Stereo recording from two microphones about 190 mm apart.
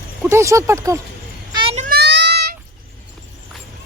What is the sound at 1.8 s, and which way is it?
Child singing, 55° right (ahead or behind).